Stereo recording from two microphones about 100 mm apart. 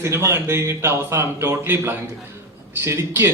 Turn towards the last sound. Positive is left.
turn(degrees=-25)  # may be behind; listen again after turning